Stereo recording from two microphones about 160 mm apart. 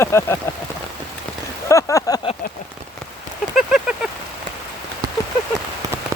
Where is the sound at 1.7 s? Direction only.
20° left (ahead or behind).